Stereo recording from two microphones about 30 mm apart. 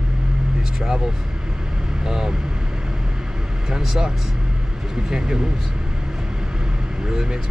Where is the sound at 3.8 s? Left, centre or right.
Centre.